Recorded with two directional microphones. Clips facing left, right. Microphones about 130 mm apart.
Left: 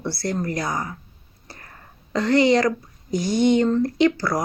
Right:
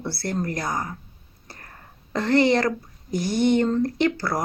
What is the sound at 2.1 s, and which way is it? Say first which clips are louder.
Speech: left 2 dB; 55° right (ahead or behind).